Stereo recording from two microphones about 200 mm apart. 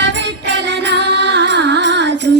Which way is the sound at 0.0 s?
60° right (ahead or behind).